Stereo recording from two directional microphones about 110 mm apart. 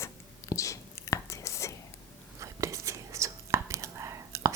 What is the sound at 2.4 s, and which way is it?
Whispering, 30° right (ahead or behind).